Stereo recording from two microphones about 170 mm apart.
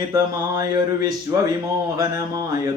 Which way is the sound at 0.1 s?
20° right (ahead or behind).